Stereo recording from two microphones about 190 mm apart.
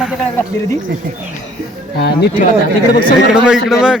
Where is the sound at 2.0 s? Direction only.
60° left (ahead or behind).